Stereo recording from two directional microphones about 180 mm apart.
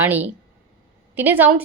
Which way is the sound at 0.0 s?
10° right (ahead or behind).